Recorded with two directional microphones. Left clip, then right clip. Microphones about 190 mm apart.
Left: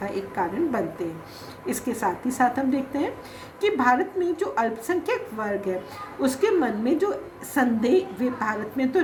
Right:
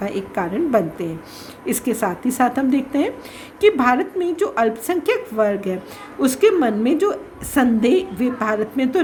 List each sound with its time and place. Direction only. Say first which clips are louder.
0.0 s a woman's voice: right 4 dB; 60° right (ahead or behind)